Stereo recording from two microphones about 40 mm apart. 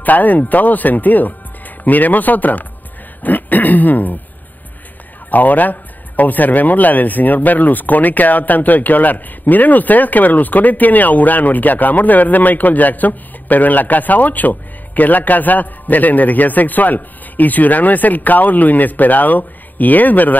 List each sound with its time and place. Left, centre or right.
0.0 s speech: left
5.3 s speech: left